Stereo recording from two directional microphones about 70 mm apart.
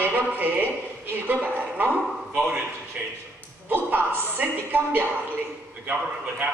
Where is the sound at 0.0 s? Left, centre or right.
Right.